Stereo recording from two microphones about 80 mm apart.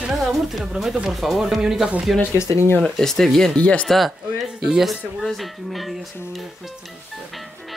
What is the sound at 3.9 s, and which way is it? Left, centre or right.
Speech, centre.